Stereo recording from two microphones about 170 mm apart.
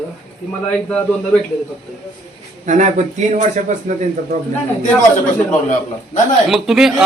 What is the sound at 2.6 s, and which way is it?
A man's voice, 45° right (ahead or behind).